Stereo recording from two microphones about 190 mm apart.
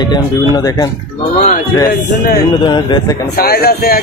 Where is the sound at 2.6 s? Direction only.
25° left (ahead or behind).